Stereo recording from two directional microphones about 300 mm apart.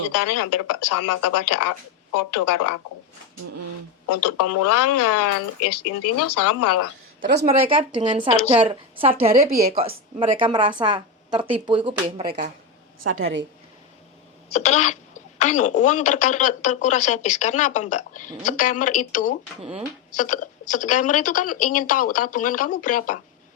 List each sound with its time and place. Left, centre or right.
0.1 s speech: left
4.1 s speech: left
7.2 s speech: right
7.4 s speech: centre
13.0 s a woman's voice: right
14.5 s a woman's voice: left